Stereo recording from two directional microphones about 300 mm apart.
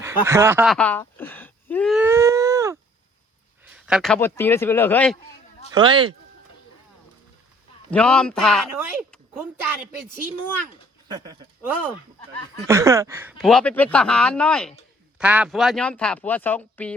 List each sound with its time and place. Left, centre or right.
0.0 s a sound: centre
3.8 s speech: centre
5.7 s speech: centre
7.9 s speech: centre
11.1 s speech: centre
12.6 s speech: centre